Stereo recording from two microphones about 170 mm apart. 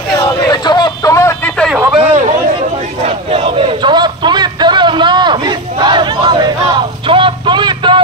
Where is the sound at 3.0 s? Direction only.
35° right (ahead or behind).